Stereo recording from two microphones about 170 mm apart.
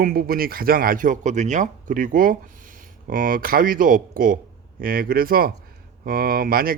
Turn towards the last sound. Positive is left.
turn(degrees=-60)  # may be behind; listen again after turning